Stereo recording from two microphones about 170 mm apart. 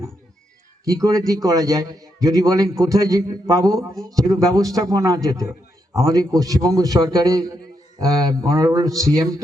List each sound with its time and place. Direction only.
0.9 s a man's voice: 20° right (ahead or behind)